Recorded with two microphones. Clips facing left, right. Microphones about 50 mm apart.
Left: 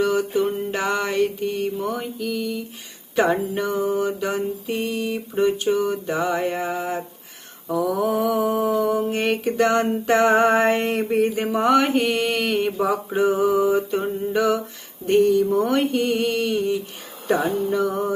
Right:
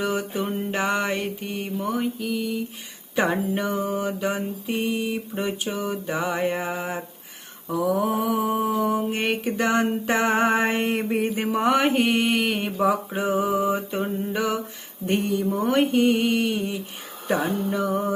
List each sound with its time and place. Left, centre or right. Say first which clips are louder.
0.0 s music: left 6 dB; centre
0.8 s mantra: left 3 dB; right
8.0 s mantra: left 3 dB; centre
14.0 s a sound: left 2 dB; centre
14.3 s mantra: left 8 dB; centre